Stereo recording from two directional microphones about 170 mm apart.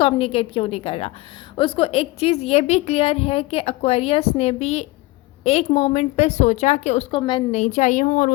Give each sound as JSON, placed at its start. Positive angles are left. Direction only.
{"t": 0.0, "sound": "a woman's voice", "side_deg": 35}
{"t": 7.1, "sound": "a woman's voice", "side_deg": 30}